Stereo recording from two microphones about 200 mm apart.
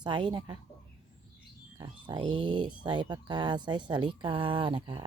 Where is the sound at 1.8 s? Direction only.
25° right (ahead or behind).